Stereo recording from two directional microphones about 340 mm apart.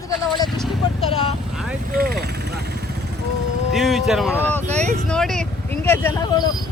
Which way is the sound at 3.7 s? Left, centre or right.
Centre.